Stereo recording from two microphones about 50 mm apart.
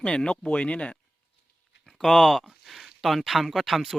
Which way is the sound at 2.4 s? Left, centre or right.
Centre.